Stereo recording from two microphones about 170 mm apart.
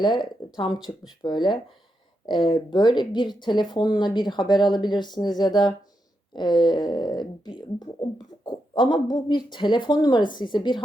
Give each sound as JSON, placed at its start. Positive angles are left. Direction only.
{"t": 0.0, "sound": "speech", "side_deg": 25}